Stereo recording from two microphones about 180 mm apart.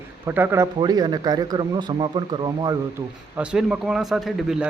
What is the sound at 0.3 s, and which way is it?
A man's voice, 10° right (ahead or behind).